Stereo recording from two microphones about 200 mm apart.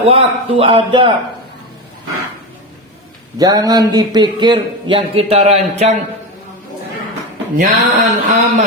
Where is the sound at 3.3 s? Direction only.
20° right (ahead or behind).